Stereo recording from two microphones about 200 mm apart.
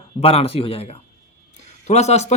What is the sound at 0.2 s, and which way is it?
Speech, 30° left (ahead or behind).